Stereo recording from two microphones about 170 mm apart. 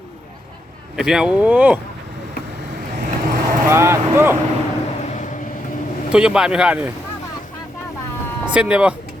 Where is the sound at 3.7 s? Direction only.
15° right (ahead or behind).